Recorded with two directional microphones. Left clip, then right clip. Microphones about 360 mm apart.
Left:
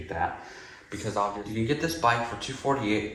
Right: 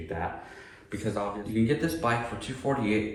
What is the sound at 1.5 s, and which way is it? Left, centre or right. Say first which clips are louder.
Speech: right 5 dB; centre.